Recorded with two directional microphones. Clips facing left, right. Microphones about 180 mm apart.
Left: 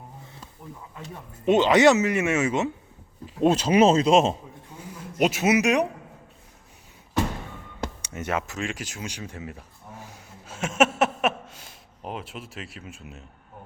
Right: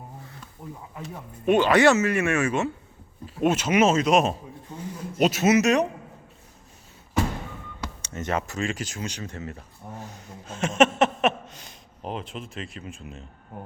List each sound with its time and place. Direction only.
1.5 s speech: 20° left (ahead or behind)
3.4 s speech: 35° left (ahead or behind)
5.1 s speech: 15° left (ahead or behind)
8.0 s speech: 10° left (ahead or behind)
10.1 s a sound: 5° left (ahead or behind)